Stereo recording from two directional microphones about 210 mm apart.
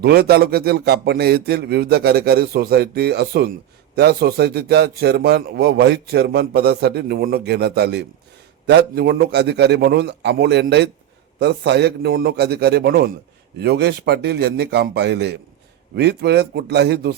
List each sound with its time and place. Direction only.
0.0 s a man's voice: 50° right (ahead or behind)